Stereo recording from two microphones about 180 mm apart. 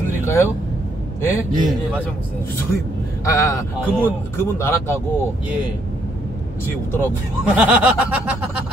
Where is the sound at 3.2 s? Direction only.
15° left (ahead or behind).